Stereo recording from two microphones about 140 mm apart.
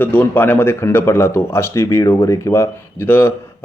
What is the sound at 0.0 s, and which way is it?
Speech, 15° left (ahead or behind).